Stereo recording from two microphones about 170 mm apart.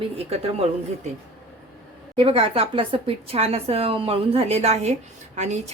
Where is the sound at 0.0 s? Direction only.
35° right (ahead or behind).